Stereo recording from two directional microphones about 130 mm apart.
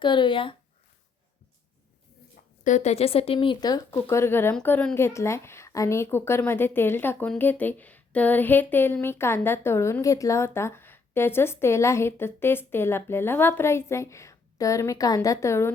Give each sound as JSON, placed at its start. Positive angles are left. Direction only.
{"t": 0.0, "sound": "speech", "side_deg": 40}
{"t": 2.6, "sound": "speech", "side_deg": 65}
{"t": 4.0, "sound": "a woman's voice", "side_deg": 20}